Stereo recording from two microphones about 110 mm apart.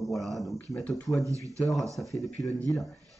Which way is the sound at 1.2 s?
30° right (ahead or behind).